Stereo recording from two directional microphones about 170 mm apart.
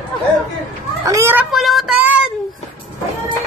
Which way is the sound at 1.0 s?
15° right (ahead or behind).